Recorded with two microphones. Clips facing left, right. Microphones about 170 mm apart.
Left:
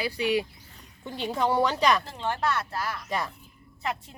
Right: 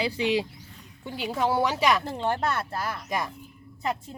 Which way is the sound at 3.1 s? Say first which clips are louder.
Right 1 dB; 15° right (ahead or behind).